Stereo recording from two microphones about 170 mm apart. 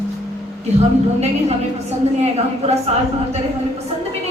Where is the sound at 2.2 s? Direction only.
40° right (ahead or behind).